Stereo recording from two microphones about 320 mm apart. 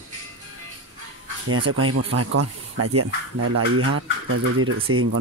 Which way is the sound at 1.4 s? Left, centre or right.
Right.